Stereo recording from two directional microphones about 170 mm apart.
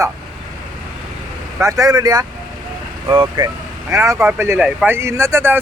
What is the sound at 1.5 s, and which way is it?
Speech, 20° right (ahead or behind).